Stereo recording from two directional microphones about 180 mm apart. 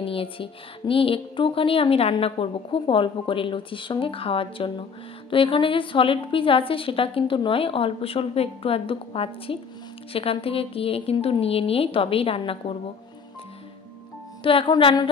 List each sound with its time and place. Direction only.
0.0 s a woman's voice: 30° left (ahead or behind)
14.4 s a woman's voice: 30° left (ahead or behind)